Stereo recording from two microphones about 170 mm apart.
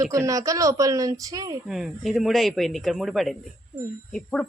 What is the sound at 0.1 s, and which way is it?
Speech, 20° right (ahead or behind).